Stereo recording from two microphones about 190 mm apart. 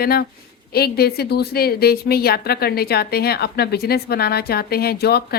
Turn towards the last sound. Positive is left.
turn(degrees=55)  # may be behind; listen again after turning